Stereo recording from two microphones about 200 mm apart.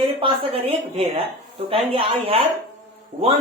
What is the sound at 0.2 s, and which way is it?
A woman's voice, 25° right (ahead or behind).